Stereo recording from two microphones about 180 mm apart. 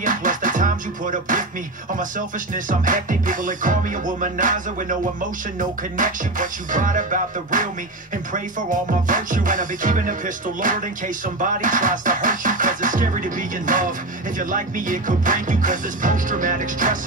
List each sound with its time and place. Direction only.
0.0 s music: 45° right (ahead or behind)